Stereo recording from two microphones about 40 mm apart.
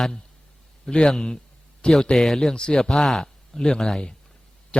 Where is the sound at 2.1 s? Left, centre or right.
Centre.